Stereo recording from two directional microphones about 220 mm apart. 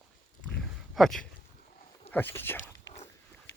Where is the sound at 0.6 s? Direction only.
Centre (ahead or behind).